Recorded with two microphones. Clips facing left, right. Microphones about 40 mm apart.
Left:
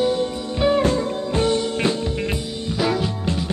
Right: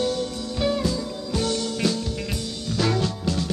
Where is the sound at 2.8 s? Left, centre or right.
Centre.